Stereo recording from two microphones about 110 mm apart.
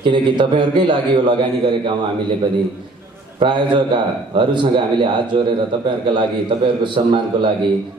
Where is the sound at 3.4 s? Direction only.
50° right (ahead or behind).